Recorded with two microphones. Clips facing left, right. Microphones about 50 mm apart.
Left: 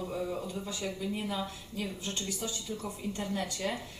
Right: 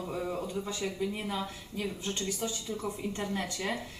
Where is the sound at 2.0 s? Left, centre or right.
Right.